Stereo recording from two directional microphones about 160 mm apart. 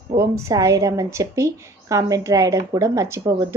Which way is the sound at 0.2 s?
20° right (ahead or behind).